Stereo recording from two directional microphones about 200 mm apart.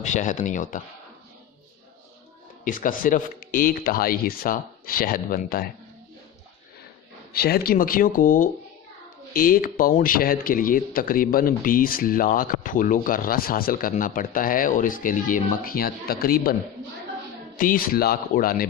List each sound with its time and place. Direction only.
0.0 s speech: 40° left (ahead or behind)
2.6 s speech: 40° left (ahead or behind)
7.3 s speech: 50° left (ahead or behind)
17.6 s speech: 45° left (ahead or behind)